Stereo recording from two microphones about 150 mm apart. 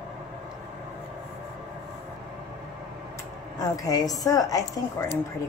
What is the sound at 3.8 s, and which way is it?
A woman's voice, 25° left (ahead or behind).